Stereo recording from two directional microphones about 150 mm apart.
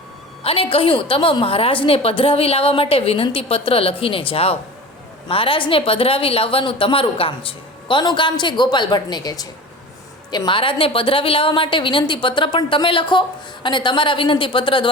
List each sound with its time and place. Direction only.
0.4 s a woman's voice: 40° left (ahead or behind)